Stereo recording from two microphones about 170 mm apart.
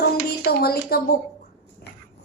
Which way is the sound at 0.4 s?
65° left (ahead or behind).